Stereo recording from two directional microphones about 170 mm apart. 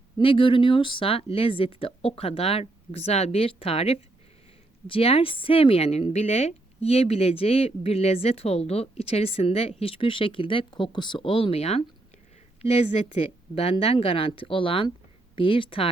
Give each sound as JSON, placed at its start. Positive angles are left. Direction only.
{"t": 0.2, "sound": "a woman's voice", "side_deg": 30}